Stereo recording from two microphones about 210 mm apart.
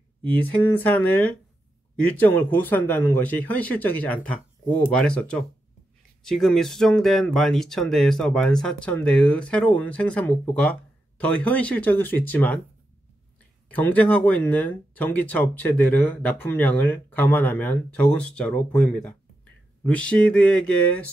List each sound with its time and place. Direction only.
0.3 s speech: 10° left (ahead or behind)
13.7 s speech: 5° left (ahead or behind)